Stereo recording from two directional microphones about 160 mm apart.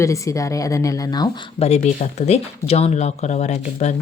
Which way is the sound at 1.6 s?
45° left (ahead or behind).